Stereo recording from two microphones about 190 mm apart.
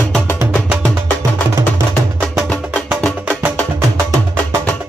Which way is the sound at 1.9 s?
5° left (ahead or behind).